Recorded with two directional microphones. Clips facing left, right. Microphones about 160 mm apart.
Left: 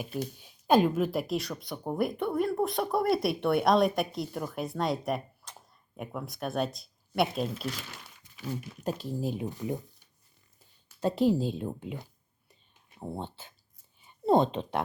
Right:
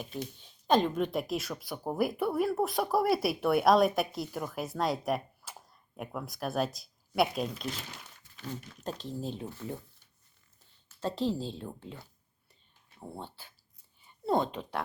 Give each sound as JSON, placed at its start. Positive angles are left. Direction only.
{"t": 0.3, "sound": "speech", "side_deg": 10}
{"t": 8.2, "sound": "speech", "side_deg": 10}
{"t": 14.0, "sound": "oink", "side_deg": 20}